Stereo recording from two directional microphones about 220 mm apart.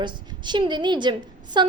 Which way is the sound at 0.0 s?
20° right (ahead or behind).